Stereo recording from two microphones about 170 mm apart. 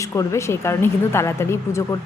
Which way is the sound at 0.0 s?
20° left (ahead or behind).